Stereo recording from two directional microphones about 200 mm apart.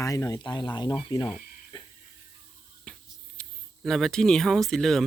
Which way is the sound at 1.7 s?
25° left (ahead or behind).